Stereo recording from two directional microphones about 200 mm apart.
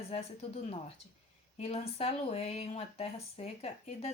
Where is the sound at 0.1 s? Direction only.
30° left (ahead or behind).